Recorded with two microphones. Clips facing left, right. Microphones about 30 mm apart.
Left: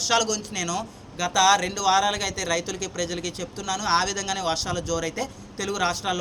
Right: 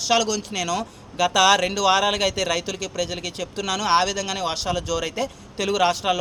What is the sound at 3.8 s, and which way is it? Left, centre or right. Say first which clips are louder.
Speech: right 3 dB; right.